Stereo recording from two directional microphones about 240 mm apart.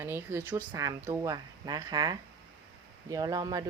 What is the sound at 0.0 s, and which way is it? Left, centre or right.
Speech, centre.